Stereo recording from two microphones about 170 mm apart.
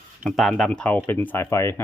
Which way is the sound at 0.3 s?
5° left (ahead or behind).